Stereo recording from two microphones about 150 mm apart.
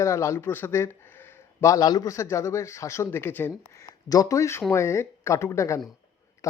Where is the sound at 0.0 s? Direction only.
20° left (ahead or behind).